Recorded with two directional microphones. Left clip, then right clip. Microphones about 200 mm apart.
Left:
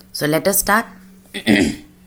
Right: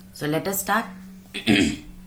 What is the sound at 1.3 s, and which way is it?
Speech, 30° left (ahead or behind).